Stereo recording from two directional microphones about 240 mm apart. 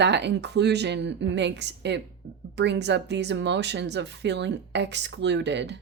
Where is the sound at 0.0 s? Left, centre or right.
Right.